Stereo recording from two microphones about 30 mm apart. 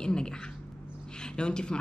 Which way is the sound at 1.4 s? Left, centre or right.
Left.